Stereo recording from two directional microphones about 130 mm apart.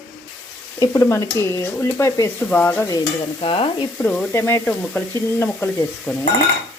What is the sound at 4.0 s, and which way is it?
Speech, 15° left (ahead or behind).